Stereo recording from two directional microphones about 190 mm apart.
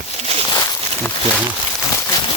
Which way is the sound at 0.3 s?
35° right (ahead or behind).